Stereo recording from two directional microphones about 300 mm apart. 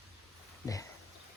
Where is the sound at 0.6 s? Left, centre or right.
Centre.